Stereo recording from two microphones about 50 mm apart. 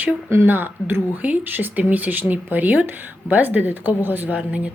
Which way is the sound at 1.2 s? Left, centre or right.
Right.